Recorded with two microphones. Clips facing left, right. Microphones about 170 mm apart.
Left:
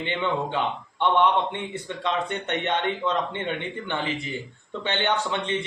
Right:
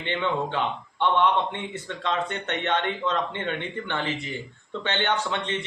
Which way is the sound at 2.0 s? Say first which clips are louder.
Left 1 dB; 15° left (ahead or behind).